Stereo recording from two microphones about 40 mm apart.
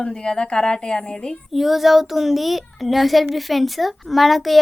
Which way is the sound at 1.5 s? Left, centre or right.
Centre.